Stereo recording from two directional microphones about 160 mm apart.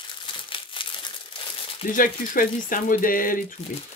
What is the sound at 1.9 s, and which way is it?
Speech, 60° left (ahead or behind).